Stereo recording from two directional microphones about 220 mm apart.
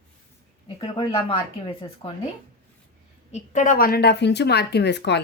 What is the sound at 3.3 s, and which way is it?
Speech, 35° left (ahead or behind).